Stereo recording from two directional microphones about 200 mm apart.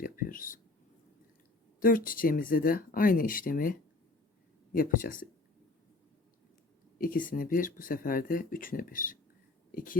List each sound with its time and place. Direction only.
0.0 s a sound: 45° left (ahead or behind)
1.8 s speech: 45° left (ahead or behind)
7.0 s speech: 45° left (ahead or behind)